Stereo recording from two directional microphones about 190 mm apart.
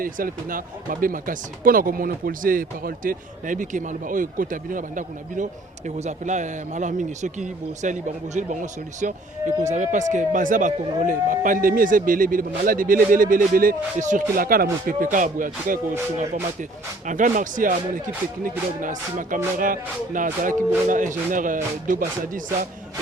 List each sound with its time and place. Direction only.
0.0 s speech: 45° right (ahead or behind)